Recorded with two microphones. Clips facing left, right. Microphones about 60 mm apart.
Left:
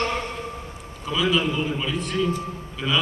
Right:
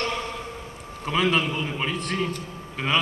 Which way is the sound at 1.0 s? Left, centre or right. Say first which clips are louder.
Even; right.